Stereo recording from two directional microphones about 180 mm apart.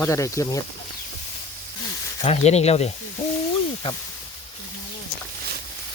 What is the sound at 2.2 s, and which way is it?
Speech, 35° left (ahead or behind).